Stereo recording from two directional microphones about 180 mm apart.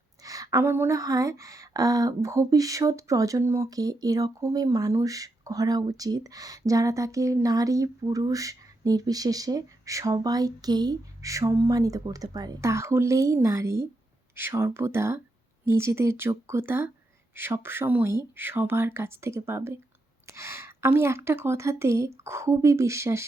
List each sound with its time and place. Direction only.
0.2 s a woman's voice: 20° right (ahead or behind)